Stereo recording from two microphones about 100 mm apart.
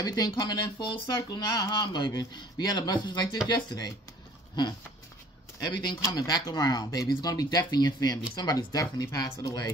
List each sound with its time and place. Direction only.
0.0 s speech: 40° left (ahead or behind)